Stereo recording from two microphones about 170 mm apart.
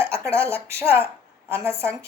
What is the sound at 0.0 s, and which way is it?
A woman's voice, 15° right (ahead or behind).